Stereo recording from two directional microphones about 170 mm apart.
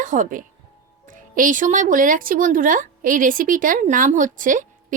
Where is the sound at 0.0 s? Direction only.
50° right (ahead or behind).